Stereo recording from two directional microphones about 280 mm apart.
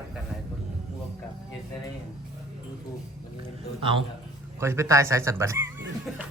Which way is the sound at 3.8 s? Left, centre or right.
Centre.